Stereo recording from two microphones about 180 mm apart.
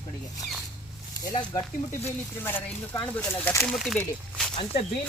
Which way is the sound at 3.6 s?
Centre (ahead or behind).